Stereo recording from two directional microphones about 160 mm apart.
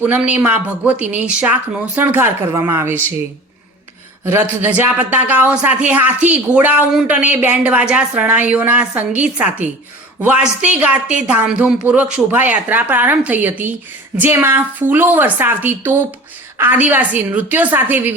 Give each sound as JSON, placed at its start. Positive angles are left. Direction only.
{"t": 0.0, "sound": "speech", "side_deg": -10}
{"t": 4.2, "sound": "speech", "side_deg": -15}